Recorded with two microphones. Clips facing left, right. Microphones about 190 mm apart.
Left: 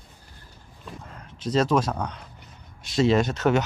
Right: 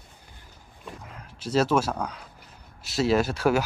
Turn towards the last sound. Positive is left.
turn(degrees=-5)  # may be behind; listen again after turning